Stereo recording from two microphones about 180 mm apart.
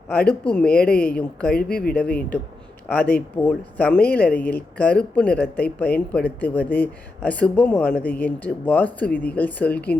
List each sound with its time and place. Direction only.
0.3 s speech: 5° left (ahead or behind)
1.7 s speech: 55° left (ahead or behind)
2.0 s speech: 10° left (ahead or behind)